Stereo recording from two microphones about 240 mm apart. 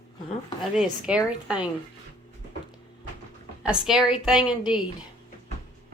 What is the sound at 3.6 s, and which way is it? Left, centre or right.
A woman's voice, centre.